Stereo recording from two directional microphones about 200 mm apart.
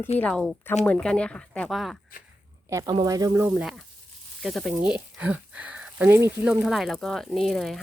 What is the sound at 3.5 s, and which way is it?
Speech, 5° right (ahead or behind).